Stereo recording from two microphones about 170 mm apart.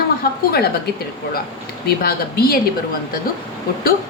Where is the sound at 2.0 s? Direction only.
65° left (ahead or behind).